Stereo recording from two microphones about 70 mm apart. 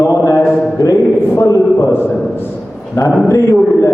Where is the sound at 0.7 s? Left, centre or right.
Left.